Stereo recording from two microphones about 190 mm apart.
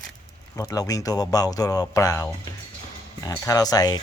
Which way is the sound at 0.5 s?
20° left (ahead or behind).